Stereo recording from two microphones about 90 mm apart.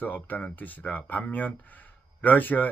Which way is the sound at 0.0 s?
20° left (ahead or behind).